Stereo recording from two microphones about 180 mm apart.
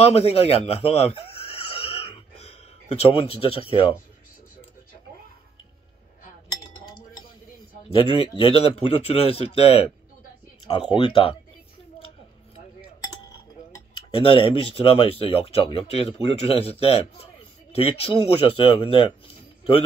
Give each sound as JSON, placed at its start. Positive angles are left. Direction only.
{"t": 0.0, "sound": "a sound", "side_deg": 35}
{"t": 6.6, "sound": "chink", "side_deg": 25}
{"t": 7.9, "sound": "speech", "side_deg": 30}
{"t": 14.1, "sound": "speech", "side_deg": 30}